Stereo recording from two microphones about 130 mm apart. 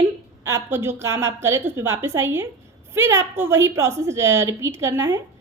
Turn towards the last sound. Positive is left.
turn(degrees=-25)  # may be behind; listen again after turning